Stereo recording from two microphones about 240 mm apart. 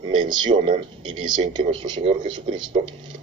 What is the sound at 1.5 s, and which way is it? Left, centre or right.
Speech, centre.